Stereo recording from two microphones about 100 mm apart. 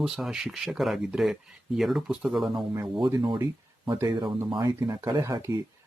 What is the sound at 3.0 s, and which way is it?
Speech, 50° right (ahead or behind).